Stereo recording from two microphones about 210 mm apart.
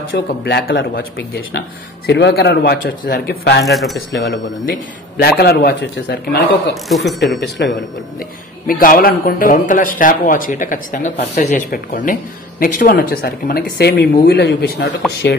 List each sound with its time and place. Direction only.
0.1 s speech: 50° left (ahead or behind)
3.6 s speech: centre (ahead or behind)
4.1 s speech: 45° left (ahead or behind)
6.9 s speech: centre (ahead or behind)
7.3 s speech: 50° left (ahead or behind)